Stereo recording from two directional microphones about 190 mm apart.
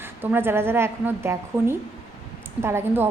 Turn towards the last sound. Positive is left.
turn(degrees=-15)  # may be behind; listen again after turning